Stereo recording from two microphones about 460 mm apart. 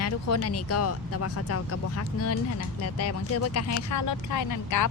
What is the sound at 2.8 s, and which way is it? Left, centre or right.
A woman's voice, left.